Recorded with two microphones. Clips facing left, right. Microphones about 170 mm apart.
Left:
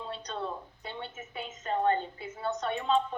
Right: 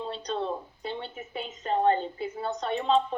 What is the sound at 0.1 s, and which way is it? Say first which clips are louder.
A woman's voice: right 4 dB; 30° right (ahead or behind).